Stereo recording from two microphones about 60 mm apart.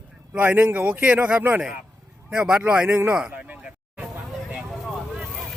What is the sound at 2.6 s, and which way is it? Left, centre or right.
Speech, centre.